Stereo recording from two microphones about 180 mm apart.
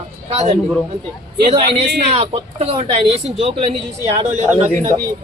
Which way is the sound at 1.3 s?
65° right (ahead or behind).